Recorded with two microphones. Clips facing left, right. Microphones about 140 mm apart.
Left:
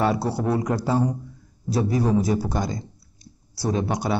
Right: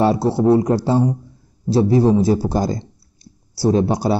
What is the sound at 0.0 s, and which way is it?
A man's voice, 30° right (ahead or behind).